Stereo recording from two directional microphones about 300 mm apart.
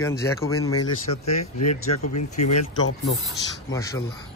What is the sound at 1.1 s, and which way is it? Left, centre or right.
Speech, left.